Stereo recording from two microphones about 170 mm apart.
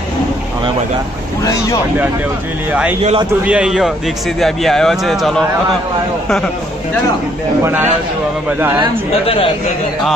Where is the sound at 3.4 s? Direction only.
5° right (ahead or behind).